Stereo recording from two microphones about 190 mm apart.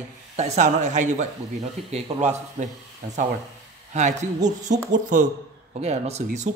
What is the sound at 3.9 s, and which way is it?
A man's voice, 40° right (ahead or behind).